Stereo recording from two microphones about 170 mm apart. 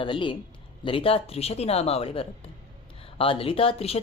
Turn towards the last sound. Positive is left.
turn(degrees=35)  # may be behind; listen again after turning